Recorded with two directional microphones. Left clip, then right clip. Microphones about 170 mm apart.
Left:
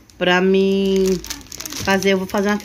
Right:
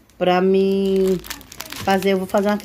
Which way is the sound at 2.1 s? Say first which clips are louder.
Even; 25° right (ahead or behind).